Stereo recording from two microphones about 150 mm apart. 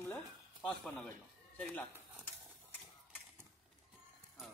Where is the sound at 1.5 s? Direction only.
10° left (ahead or behind).